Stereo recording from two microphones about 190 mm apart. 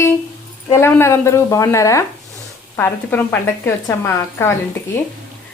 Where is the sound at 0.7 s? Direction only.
15° left (ahead or behind).